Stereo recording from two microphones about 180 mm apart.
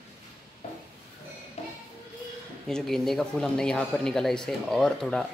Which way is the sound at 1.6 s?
35° left (ahead or behind).